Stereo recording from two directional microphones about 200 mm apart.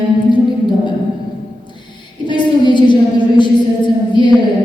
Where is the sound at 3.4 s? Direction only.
25° left (ahead or behind).